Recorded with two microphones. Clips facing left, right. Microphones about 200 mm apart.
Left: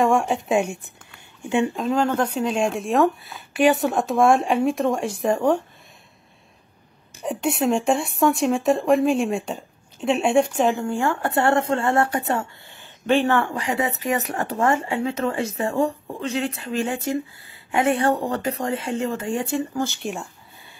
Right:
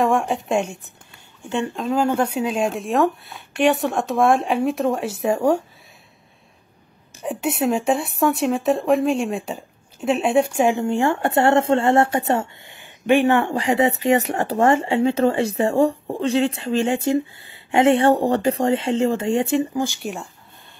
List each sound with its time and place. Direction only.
0.0 s a woman's voice: centre (ahead or behind)
7.2 s speech: 5° right (ahead or behind)
13.5 s speech: 25° right (ahead or behind)
19.6 s speech: 15° right (ahead or behind)